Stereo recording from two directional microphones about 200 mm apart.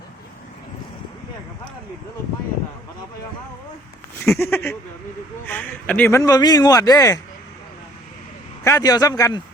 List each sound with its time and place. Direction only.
4.4 s speech: 10° left (ahead or behind)
8.6 s speech: 15° left (ahead or behind)